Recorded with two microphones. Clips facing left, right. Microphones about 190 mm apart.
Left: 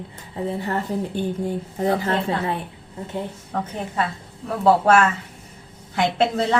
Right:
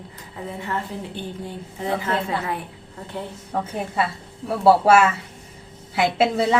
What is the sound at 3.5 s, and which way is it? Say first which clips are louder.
A woman's voice: right 3 dB; 10° right (ahead or behind).